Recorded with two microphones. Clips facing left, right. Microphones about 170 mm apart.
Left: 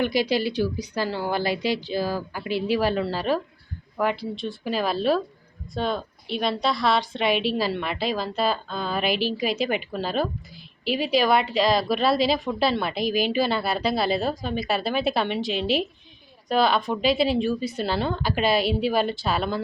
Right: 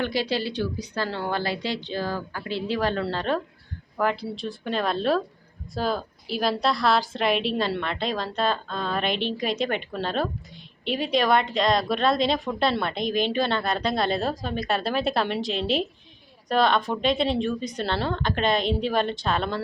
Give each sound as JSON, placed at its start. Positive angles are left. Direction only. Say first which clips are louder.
{"t": 0.0, "sound": "a woman's voice", "louder": "left 3 dB", "side_deg": 15}